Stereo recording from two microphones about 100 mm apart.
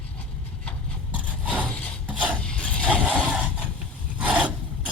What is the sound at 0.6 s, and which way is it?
Engine, 15° left (ahead or behind).